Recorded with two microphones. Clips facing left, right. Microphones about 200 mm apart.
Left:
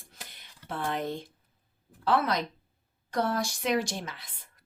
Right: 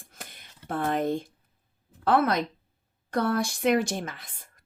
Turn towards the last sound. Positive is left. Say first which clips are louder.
# right 4 dB
turn(degrees=-50)  # may be behind; listen again after turning